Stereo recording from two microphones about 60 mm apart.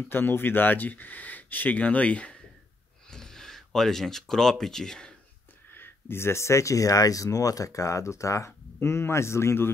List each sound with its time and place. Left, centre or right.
0.1 s speech: left
3.1 s speech: centre
5.7 s speech: left
8.7 s a man's voice: left